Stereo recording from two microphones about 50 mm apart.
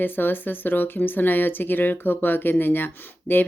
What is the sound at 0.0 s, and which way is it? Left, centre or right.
Speech, left.